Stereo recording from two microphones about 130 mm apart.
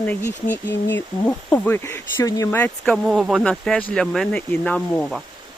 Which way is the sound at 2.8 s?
Centre (ahead or behind).